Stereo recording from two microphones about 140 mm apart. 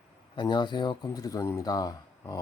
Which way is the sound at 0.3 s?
35° left (ahead or behind).